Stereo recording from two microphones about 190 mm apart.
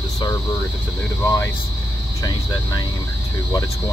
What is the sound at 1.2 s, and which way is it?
Speech, 15° left (ahead or behind).